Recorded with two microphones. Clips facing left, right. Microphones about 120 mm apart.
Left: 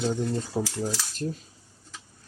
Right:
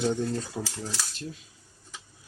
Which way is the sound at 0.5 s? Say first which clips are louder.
Left 6 dB; 30° left (ahead or behind).